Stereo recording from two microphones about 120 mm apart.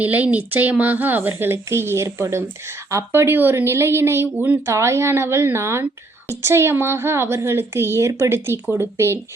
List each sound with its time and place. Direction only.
0.0 s a woman's voice: 15° right (ahead or behind)